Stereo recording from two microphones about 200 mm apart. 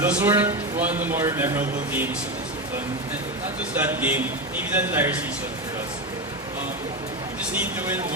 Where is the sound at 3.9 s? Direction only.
10° right (ahead or behind).